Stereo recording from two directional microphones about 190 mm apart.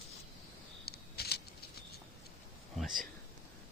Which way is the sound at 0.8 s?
55° left (ahead or behind).